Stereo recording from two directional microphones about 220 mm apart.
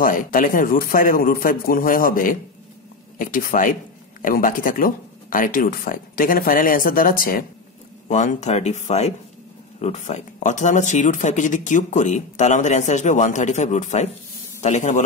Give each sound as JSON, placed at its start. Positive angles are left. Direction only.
{"t": 0.0, "sound": "speech", "side_deg": 40}